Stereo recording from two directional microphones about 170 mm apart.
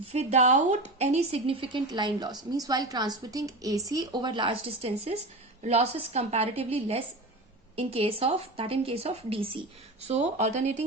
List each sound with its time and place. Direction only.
0.1 s a woman's voice: 40° right (ahead or behind)